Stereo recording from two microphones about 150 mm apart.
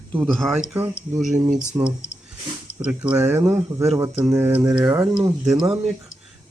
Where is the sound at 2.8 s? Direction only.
10° right (ahead or behind).